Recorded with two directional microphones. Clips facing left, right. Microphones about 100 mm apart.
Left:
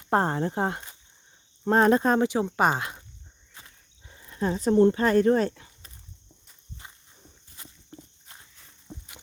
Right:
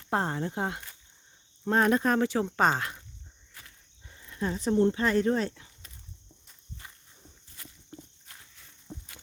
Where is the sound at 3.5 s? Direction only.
25° left (ahead or behind); by 5.9 s 45° left (ahead or behind).